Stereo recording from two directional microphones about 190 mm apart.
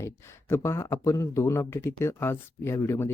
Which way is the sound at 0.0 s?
15° left (ahead or behind).